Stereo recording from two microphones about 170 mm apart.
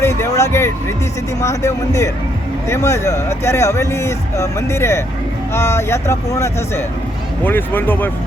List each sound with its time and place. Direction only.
0.0 s speech: 15° left (ahead or behind)